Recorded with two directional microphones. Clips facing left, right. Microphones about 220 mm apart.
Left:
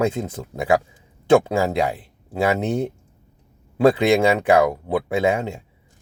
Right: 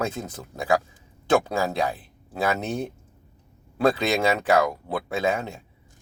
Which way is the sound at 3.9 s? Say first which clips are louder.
Left 6 dB; 25° left (ahead or behind).